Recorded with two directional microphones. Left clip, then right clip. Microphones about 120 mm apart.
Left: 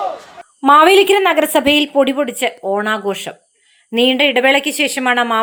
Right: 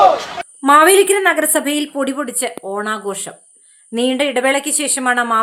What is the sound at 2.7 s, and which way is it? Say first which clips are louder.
Speech: left 4 dB; 20° left (ahead or behind).